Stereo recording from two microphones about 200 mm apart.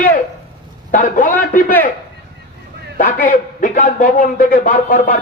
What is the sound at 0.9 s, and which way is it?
Speech, 40° left (ahead or behind).